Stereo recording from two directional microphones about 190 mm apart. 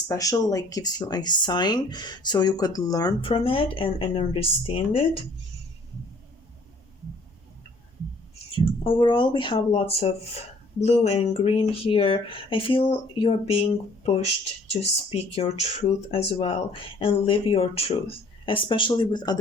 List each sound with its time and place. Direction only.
0.1 s speech: 20° left (ahead or behind)
8.5 s speech: 25° left (ahead or behind)